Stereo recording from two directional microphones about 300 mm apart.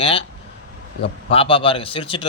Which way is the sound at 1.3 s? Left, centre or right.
Centre.